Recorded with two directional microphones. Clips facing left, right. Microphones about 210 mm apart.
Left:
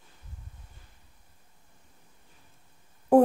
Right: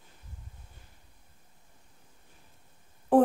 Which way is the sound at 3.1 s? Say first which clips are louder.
Left 3 dB; 10° left (ahead or behind).